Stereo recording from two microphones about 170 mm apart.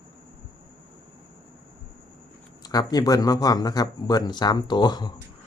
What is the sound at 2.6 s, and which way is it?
Speech, 20° left (ahead or behind).